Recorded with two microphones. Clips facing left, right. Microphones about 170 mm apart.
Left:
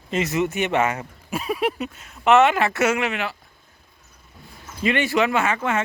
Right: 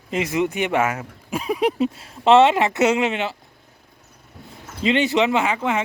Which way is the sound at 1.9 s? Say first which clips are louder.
Right 1 dB; 30° right (ahead or behind).